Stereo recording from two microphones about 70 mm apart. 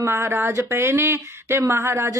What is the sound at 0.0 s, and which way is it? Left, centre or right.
Speech, right.